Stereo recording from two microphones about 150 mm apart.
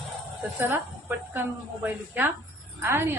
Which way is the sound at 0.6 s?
15° right (ahead or behind).